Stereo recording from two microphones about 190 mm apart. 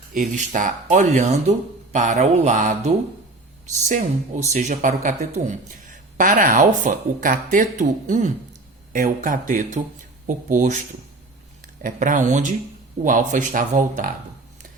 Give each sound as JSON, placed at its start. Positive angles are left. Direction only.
{"t": 0.1, "sound": "speech", "side_deg": -45}
{"t": 4.5, "sound": "speech", "side_deg": -40}